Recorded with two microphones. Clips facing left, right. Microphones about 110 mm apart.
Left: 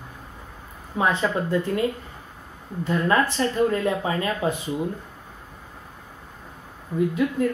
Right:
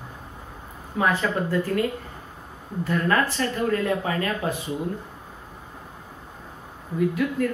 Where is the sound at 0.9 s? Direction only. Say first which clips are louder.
Left 1 dB; 20° left (ahead or behind).